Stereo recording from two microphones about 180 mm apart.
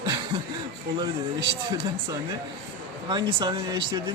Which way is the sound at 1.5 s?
25° right (ahead or behind).